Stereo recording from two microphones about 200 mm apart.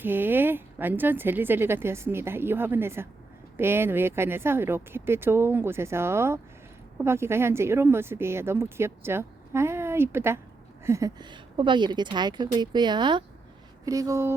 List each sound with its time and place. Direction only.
0.0 s a woman's voice: 10° right (ahead or behind)